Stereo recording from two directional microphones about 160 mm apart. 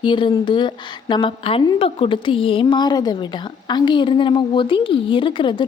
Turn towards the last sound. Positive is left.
turn(degrees=30)  # may be behind; listen again after turning